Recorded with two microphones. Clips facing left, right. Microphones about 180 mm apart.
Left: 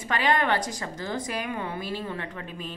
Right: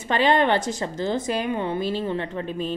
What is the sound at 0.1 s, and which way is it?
A woman's voice, 25° right (ahead or behind).